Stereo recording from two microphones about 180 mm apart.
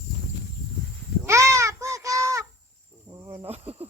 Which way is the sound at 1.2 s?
15° right (ahead or behind).